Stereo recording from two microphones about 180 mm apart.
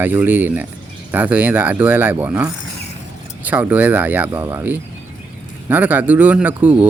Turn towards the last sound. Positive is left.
turn(degrees=-10)  # may be behind; listen again after turning